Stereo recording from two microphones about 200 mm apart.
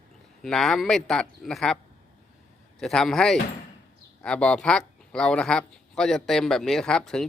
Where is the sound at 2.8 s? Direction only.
Centre (ahead or behind).